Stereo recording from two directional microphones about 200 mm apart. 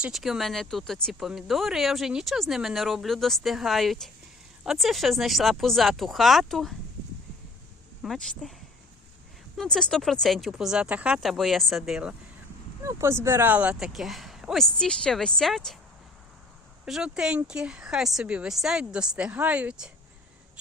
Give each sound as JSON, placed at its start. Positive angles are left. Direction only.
{"t": 0.0, "sound": "speech", "side_deg": 0}
{"t": 8.0, "sound": "speech", "side_deg": 0}
{"t": 9.6, "sound": "speech", "side_deg": 5}
{"t": 16.8, "sound": "speech", "side_deg": -5}